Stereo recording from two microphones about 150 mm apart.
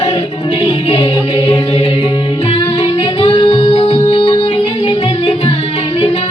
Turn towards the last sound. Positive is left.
turn(degrees=40)  # may be behind; listen again after turning